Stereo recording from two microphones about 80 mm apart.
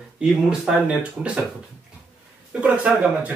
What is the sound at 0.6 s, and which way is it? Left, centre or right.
Speech, centre.